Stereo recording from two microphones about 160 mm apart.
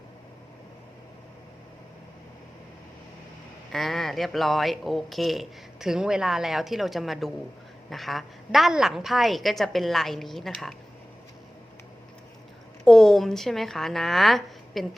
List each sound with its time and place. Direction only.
3.7 s speech: centre (ahead or behind)
12.8 s speech: centre (ahead or behind)